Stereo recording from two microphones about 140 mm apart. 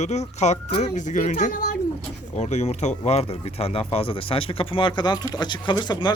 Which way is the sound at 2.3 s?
55° left (ahead or behind).